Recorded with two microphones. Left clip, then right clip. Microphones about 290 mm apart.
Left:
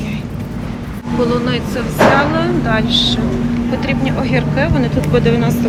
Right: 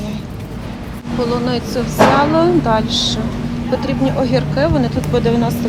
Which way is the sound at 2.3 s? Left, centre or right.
Centre.